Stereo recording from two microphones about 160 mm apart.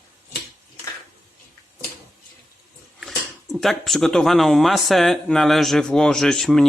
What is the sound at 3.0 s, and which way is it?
Speech, centre (ahead or behind).